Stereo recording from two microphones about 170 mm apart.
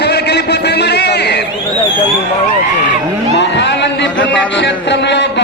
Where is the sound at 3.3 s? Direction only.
90° left.